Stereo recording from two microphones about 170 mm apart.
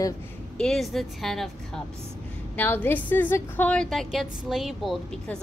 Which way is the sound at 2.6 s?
10° left (ahead or behind).